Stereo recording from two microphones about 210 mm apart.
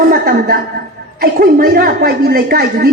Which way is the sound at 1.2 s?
45° right (ahead or behind).